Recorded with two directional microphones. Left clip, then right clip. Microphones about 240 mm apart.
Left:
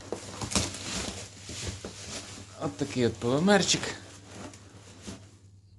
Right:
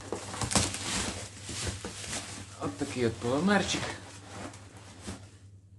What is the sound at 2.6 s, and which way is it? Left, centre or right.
Speech, left.